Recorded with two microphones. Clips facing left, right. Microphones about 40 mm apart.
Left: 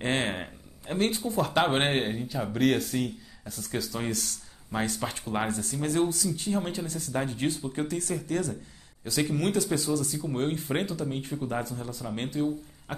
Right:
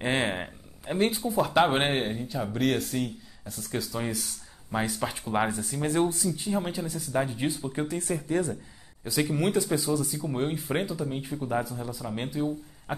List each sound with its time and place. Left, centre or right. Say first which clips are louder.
0.0 s speech: right 1 dB; centre
1.2 s speech: right 4 dB; centre
6.0 s speech: right 1 dB; right
6.3 s speech: even; centre
7.8 s speech: right 1 dB; right
10.0 s speech: even; centre